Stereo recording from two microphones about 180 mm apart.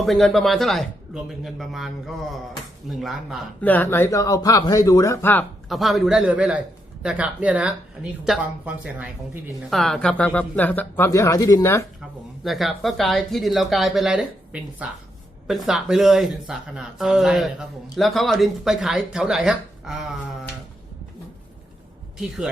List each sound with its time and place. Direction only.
0.0 s speech: centre (ahead or behind)
3.6 s speech: 10° left (ahead or behind)
5.6 s speech: centre (ahead or behind); by 11.9 s 15° left (ahead or behind)
12.4 s speech: centre (ahead or behind)